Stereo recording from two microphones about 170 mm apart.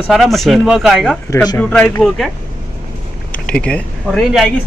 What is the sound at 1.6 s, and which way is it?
Speech, 5° left (ahead or behind).